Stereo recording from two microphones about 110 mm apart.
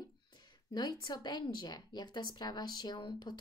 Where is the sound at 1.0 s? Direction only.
40° left (ahead or behind).